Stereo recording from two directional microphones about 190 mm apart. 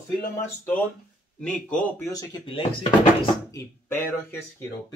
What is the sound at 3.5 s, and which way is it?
Speech, 10° left (ahead or behind).